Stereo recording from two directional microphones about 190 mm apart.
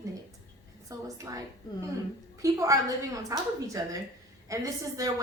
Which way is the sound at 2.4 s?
15° right (ahead or behind).